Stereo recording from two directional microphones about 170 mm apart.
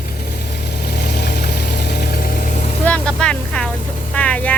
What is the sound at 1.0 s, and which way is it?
Vehicle, 70° left (ahead or behind).